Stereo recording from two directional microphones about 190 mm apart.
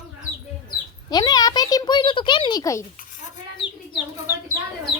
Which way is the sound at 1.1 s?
20° left (ahead or behind).